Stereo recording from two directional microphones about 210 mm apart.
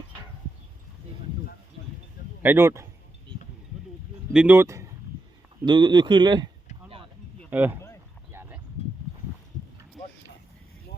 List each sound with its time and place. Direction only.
2.4 s speech: 10° right (ahead or behind)
4.3 s speech: 5° right (ahead or behind); by 6.5 s 20° right (ahead or behind)
7.5 s speech: 10° right (ahead or behind)
8.3 s a sound: 10° right (ahead or behind)